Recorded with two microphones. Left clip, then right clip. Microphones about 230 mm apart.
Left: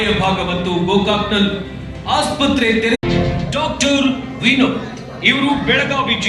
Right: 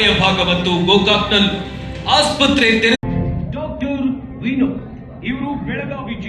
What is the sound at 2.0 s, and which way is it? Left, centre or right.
Music, left.